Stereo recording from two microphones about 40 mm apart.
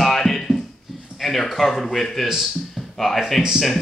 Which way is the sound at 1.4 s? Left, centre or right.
Centre.